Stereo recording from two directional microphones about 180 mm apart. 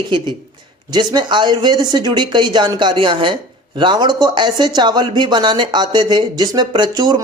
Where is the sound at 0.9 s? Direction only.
25° right (ahead or behind).